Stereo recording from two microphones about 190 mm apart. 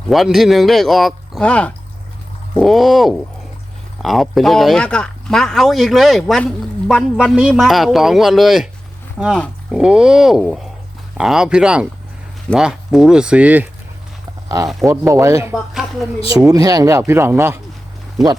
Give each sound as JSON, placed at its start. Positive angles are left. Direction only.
{"t": 0.1, "sound": "speech", "side_deg": 0}
{"t": 14.8, "sound": "speech", "side_deg": -15}
{"t": 15.5, "sound": "speech", "side_deg": 0}
{"t": 16.4, "sound": "speech", "side_deg": -20}